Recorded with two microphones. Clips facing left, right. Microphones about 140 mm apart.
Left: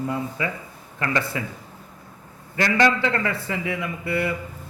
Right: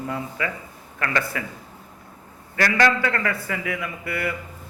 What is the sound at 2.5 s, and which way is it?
A man's voice, 20° left (ahead or behind).